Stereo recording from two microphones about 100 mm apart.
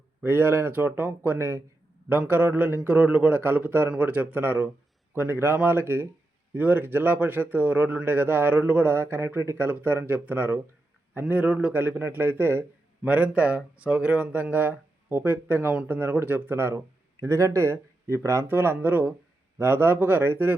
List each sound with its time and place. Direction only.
0.2 s a man's voice: 20° right (ahead or behind)